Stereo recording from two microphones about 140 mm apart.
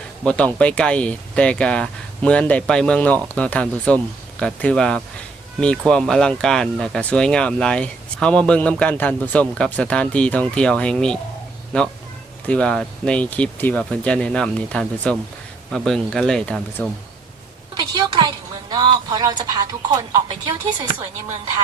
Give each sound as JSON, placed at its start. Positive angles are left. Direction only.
{"t": 0.3, "sound": "speech", "side_deg": 10}
{"t": 12.5, "sound": "speech", "side_deg": 10}
{"t": 17.7, "sound": "a woman's voice", "side_deg": -30}